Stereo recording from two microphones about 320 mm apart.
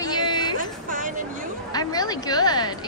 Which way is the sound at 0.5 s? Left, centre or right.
Right.